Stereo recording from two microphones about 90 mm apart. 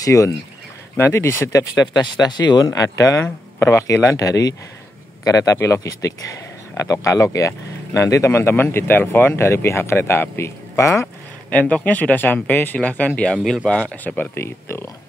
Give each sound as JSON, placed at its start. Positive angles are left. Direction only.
{"t": 0.0, "sound": "speech", "side_deg": 35}
{"t": 2.0, "sound": "speech", "side_deg": 50}
{"t": 11.5, "sound": "speech", "side_deg": 15}
{"t": 14.4, "sound": "speech", "side_deg": 30}